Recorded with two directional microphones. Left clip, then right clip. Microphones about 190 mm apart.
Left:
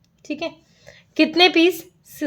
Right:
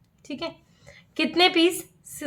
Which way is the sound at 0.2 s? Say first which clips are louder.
Left 5 dB; 25° left (ahead or behind).